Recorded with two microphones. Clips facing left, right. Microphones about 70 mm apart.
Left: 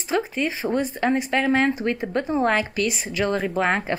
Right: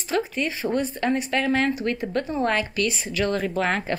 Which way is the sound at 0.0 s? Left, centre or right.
Left.